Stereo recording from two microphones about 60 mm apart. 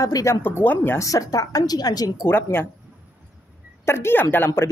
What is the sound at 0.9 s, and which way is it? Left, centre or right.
A woman's voice, left.